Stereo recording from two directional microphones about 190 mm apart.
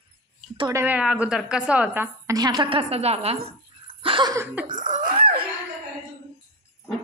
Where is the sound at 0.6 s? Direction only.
15° right (ahead or behind); by 3.3 s 35° right (ahead or behind).